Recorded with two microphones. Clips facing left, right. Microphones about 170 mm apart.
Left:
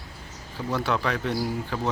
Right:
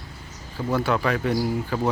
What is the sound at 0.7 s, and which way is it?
Speech, 5° right (ahead or behind).